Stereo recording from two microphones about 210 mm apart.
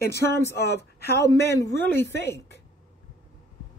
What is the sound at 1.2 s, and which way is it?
Speech, 15° left (ahead or behind).